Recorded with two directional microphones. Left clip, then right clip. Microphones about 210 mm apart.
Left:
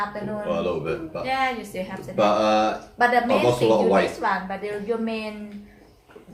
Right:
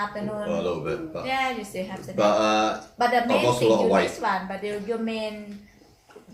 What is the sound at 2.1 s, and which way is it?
Speech, 10° right (ahead or behind).